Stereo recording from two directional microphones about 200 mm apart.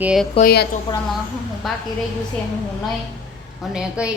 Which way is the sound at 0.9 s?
20° left (ahead or behind).